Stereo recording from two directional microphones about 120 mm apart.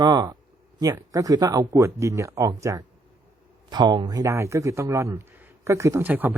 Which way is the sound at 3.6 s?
35° right (ahead or behind).